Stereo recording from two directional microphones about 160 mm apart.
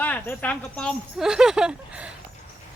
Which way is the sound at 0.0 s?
10° left (ahead or behind).